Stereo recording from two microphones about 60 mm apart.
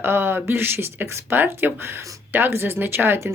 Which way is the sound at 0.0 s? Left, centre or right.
Right.